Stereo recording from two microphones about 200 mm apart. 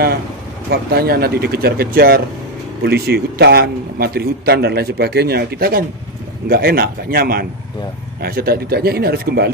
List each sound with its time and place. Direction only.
0.7 s a man's voice: 50° right (ahead or behind)